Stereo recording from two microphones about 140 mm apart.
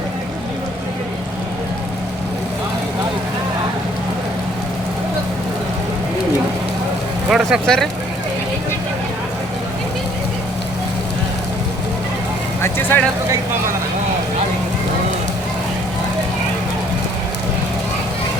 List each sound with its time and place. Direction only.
7.3 s speech: 5° right (ahead or behind)
12.6 s vehicle: 15° left (ahead or behind)